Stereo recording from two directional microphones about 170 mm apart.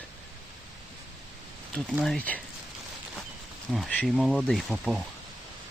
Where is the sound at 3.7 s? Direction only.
5° left (ahead or behind).